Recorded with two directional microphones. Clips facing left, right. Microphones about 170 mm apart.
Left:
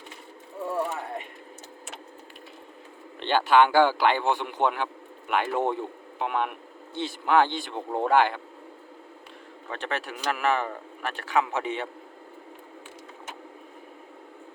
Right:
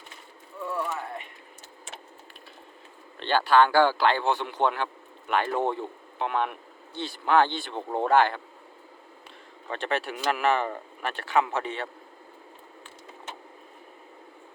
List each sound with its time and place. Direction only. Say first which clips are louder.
0.6 s a sound: left 2 dB; 40° left (ahead or behind)
3.2 s speech: left 1 dB; 20° left (ahead or behind)
9.6 s speech: right 3 dB; centre (ahead or behind)
11.6 s speech: left 3 dB; 15° left (ahead or behind)